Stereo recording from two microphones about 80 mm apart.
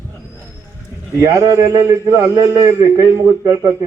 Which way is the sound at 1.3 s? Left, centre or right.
Right.